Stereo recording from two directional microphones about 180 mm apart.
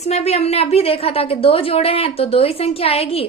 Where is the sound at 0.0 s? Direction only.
35° left (ahead or behind).